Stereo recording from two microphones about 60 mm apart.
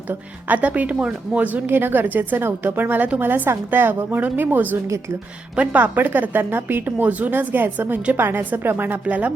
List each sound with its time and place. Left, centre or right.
0.1 s speech: right
1.5 s a woman's voice: right